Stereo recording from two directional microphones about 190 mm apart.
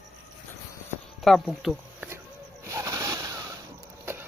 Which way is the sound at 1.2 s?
Centre (ahead or behind).